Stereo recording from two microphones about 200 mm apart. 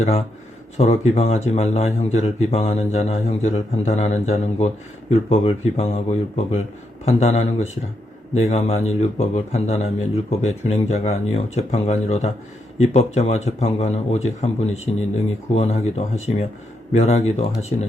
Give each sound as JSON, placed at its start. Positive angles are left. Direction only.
{"t": 0.0, "sound": "a man's voice", "side_deg": 30}